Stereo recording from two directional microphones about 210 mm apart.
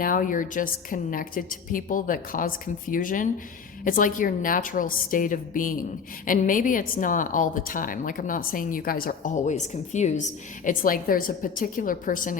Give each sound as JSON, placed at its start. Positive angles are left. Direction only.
{"t": 0.0, "sound": "a woman's voice", "side_deg": 40}